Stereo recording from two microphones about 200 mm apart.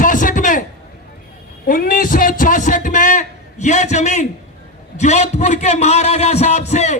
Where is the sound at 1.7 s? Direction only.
45° left (ahead or behind).